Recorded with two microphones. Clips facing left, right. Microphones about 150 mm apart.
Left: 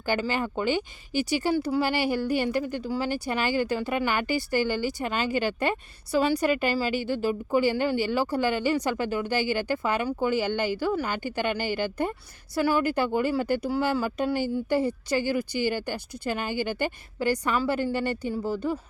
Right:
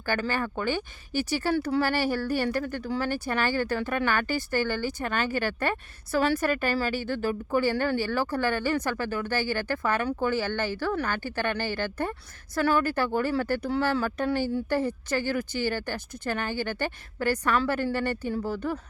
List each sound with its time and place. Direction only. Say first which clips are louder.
0.0 s speech: left 1 dB; 15° left (ahead or behind)